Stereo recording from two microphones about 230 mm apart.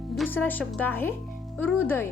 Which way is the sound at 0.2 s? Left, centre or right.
Centre.